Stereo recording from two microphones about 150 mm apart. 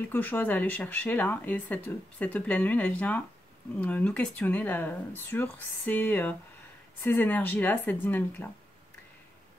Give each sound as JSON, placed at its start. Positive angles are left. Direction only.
{"t": 0.1, "sound": "speech", "side_deg": 10}